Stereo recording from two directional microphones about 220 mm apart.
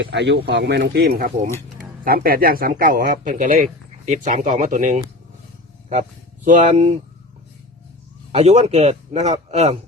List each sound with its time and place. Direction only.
0.0 s speech: 50° right (ahead or behind); by 7.0 s 30° right (ahead or behind)
8.3 s a man's voice: 30° right (ahead or behind)